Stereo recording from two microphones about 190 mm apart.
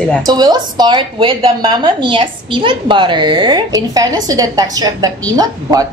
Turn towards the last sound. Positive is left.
turn(degrees=-20)  # may be behind; listen again after turning